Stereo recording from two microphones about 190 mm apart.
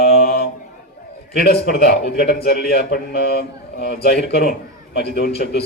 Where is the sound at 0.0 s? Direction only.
50° left (ahead or behind).